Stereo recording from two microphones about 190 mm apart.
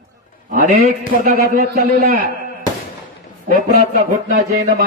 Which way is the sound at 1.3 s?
50° right (ahead or behind).